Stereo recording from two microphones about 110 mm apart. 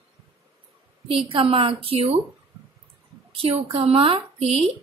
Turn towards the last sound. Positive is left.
turn(degrees=-70)  # may be behind; listen again after turning